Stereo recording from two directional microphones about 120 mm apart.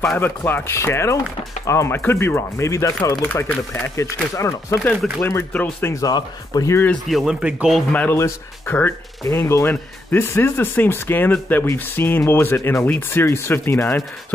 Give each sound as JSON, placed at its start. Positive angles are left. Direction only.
{"t": 0.2, "sound": "speech", "side_deg": 15}
{"t": 5.9, "sound": "speech", "side_deg": 30}
{"t": 7.1, "sound": "speech", "side_deg": -5}
{"t": 7.9, "sound": "speech", "side_deg": 15}